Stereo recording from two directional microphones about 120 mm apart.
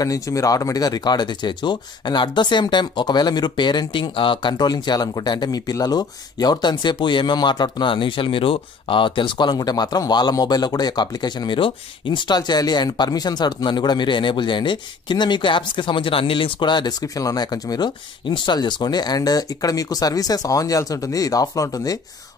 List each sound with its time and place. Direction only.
0.0 s speech: 30° left (ahead or behind)